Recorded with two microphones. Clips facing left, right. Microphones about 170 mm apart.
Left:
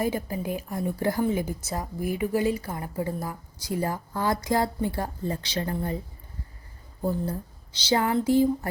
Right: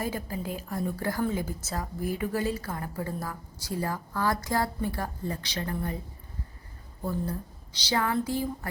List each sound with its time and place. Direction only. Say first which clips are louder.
0.0 s a woman's voice: left 5 dB; 20° left (ahead or behind)
7.0 s speech: left 4 dB; 25° left (ahead or behind)